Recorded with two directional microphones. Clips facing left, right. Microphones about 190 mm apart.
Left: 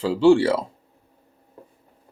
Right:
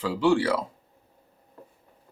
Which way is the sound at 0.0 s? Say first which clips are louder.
Left 7 dB; 25° left (ahead or behind).